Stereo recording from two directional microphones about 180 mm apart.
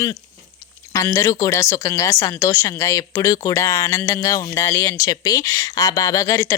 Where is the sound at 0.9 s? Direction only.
15° left (ahead or behind).